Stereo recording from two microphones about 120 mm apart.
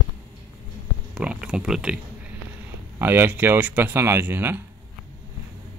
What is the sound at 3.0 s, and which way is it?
Speech, 15° right (ahead or behind).